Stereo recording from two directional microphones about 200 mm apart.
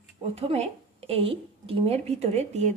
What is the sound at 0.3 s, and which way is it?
Speech, 30° right (ahead or behind).